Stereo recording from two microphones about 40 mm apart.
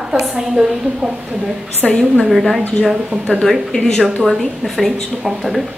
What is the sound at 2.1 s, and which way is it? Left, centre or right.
Speech, centre.